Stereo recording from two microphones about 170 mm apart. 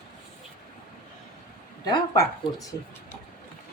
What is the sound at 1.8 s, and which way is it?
Speech, 25° left (ahead or behind).